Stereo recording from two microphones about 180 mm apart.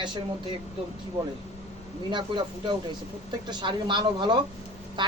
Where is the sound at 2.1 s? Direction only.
25° right (ahead or behind).